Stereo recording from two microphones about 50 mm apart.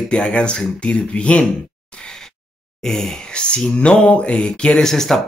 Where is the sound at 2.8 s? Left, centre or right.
Centre.